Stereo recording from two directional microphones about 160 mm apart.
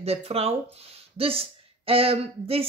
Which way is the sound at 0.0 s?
40° right (ahead or behind).